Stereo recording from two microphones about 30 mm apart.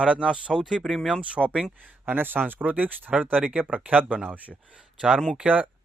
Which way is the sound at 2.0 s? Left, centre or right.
Right.